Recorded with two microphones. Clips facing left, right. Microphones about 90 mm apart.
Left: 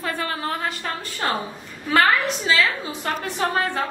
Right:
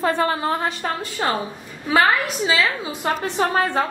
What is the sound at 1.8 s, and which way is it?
A woman's voice, 10° right (ahead or behind).